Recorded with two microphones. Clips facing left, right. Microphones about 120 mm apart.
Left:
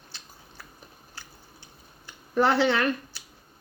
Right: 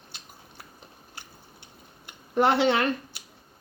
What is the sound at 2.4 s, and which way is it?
Speech, 25° right (ahead or behind).